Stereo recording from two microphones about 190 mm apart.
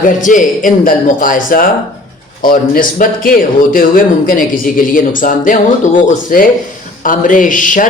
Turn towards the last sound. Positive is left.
turn(degrees=45)  # may be behind; listen again after turning